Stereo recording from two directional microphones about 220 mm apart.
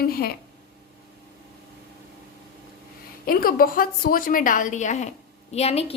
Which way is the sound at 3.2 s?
40° left (ahead or behind).